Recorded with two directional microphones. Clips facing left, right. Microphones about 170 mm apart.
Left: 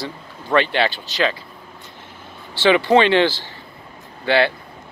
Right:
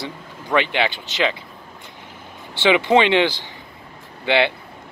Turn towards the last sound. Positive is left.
turn(degrees=-20)  # may be behind; listen again after turning